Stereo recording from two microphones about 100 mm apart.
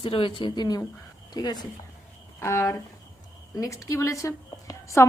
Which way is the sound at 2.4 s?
25° left (ahead or behind).